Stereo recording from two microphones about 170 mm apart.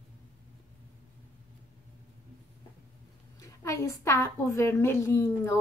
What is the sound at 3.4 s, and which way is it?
A woman's voice, 20° left (ahead or behind).